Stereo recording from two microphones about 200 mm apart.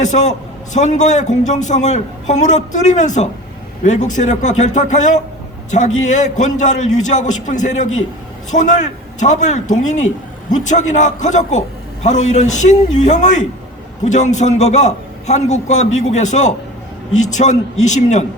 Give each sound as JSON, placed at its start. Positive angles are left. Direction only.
{"t": 0.0, "sound": "a man's voice", "side_deg": 35}